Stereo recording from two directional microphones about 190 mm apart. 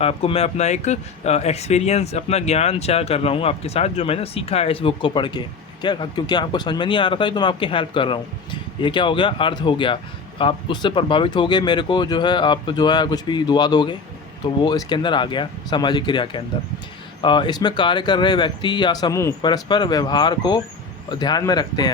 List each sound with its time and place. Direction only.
0.0 s speech: 30° left (ahead or behind)